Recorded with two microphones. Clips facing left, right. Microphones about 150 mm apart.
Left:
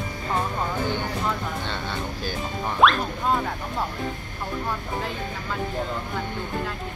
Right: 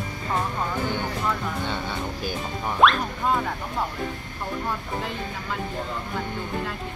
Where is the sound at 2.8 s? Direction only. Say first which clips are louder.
Even; centre (ahead or behind).